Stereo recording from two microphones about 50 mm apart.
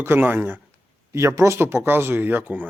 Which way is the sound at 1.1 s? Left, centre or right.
Right.